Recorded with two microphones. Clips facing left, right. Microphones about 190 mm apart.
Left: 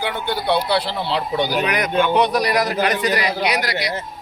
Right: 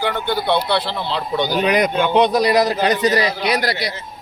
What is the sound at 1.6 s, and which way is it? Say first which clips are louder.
A man's voice: right 2 dB; 25° right (ahead or behind).